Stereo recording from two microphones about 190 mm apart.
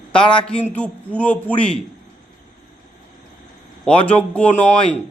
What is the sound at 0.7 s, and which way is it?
Speech, 10° left (ahead or behind).